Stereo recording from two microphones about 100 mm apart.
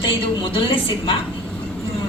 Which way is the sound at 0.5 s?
60° left (ahead or behind).